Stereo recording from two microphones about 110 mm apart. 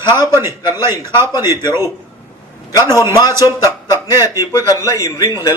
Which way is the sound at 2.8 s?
25° right (ahead or behind).